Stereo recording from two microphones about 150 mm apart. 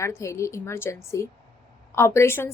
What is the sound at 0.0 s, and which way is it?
A woman's voice, 20° left (ahead or behind).